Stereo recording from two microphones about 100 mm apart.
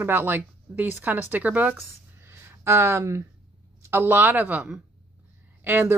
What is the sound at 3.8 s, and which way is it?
Speech, 25° right (ahead or behind).